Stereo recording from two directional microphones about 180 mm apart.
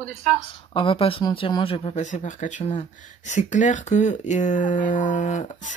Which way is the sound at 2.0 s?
45° left (ahead or behind).